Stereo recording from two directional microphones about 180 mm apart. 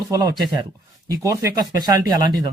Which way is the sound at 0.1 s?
20° right (ahead or behind).